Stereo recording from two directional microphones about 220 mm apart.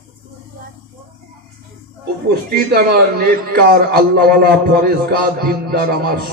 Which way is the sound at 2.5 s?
45° right (ahead or behind).